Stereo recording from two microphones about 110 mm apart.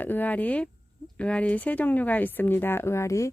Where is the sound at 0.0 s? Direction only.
15° left (ahead or behind).